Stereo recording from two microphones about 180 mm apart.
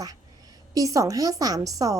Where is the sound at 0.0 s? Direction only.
20° right (ahead or behind).